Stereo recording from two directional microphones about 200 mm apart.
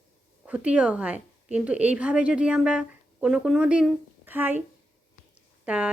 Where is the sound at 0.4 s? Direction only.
5° right (ahead or behind).